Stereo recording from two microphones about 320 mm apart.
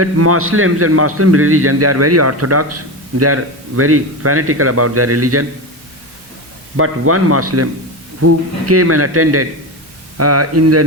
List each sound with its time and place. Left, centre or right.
0.0 s a man's voice: right
6.7 s a man's voice: right